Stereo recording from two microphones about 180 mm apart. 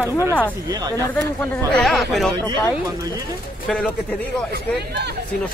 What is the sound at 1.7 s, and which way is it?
Speech, centre (ahead or behind).